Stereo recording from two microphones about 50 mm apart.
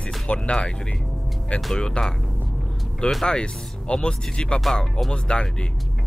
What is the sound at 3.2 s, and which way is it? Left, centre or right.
Speech, centre.